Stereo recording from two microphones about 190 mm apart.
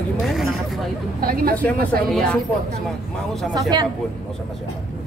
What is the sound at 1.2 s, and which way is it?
Speech, 50° right (ahead or behind).